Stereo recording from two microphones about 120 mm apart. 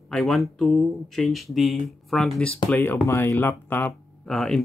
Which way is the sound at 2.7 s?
15° left (ahead or behind).